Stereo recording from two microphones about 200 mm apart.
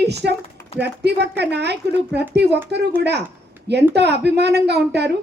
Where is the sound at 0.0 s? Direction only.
55° right (ahead or behind).